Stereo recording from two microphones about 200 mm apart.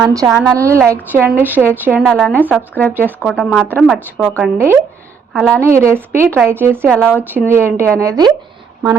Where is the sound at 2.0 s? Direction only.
5° left (ahead or behind).